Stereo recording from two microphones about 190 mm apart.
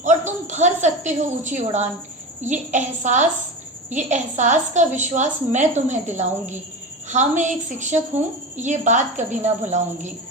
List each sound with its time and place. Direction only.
0.0 s a woman's voice: 40° right (ahead or behind)